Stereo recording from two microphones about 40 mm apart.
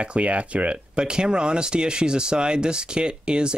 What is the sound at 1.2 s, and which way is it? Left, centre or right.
Speech, right.